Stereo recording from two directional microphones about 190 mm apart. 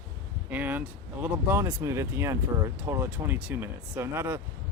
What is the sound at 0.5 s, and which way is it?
Speech, 10° right (ahead or behind).